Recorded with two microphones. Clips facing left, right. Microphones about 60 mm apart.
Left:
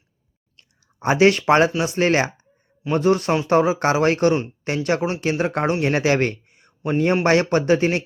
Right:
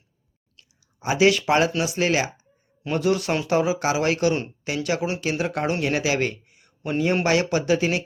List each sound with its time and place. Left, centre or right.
0.5 s clicking: left
1.8 s a man's voice: left